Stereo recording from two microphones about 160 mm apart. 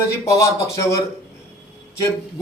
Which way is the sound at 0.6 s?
20° left (ahead or behind).